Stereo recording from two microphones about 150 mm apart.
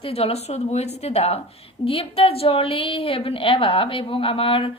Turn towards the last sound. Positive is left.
turn(degrees=35)  # may be behind; listen again after turning